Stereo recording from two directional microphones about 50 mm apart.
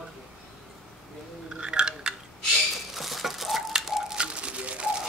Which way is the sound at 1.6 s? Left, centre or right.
Centre.